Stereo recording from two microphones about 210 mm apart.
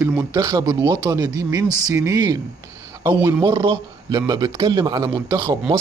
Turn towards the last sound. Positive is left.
turn(degrees=-20)  # may be behind; listen again after turning